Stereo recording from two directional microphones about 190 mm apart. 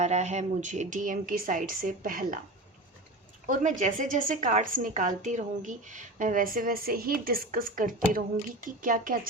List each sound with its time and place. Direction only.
0.0 s a woman's voice: 35° right (ahead or behind)
3.4 s a woman's voice: 40° right (ahead or behind)